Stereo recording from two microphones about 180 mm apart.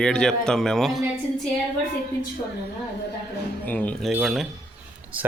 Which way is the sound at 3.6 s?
10° left (ahead or behind).